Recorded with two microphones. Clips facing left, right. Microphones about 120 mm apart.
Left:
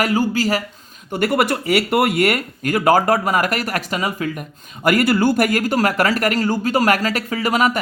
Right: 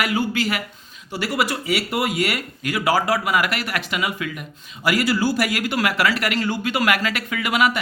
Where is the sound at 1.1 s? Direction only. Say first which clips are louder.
Left 5 dB; 50° left (ahead or behind).